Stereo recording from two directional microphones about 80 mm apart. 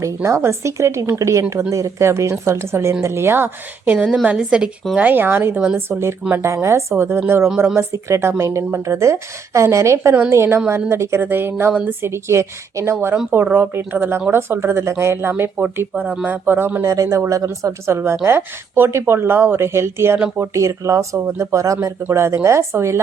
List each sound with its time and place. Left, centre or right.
0.0 s a woman's voice: right
3.9 s a woman's voice: centre
4.9 s a woman's voice: right
16.8 s a woman's voice: right